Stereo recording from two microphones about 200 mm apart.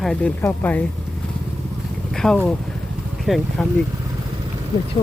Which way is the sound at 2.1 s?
5° left (ahead or behind).